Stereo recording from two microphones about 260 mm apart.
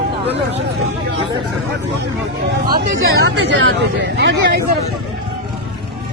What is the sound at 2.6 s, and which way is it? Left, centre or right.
Speech, right.